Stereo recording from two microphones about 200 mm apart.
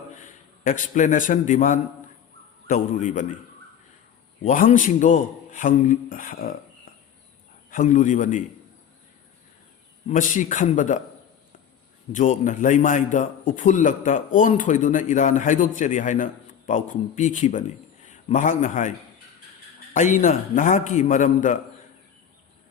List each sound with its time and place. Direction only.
0.6 s a man's voice: 40° left (ahead or behind)
4.4 s a man's voice: 40° left (ahead or behind)
7.7 s a man's voice: 40° left (ahead or behind)
10.1 s a man's voice: 40° left (ahead or behind)
12.1 s a man's voice: 40° left (ahead or behind)